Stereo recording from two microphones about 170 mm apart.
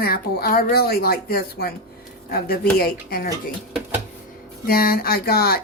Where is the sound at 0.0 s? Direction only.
65° left (ahead or behind).